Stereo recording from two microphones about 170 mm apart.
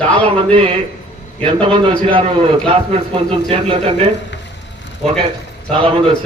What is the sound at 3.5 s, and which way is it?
Speech, 30° right (ahead or behind).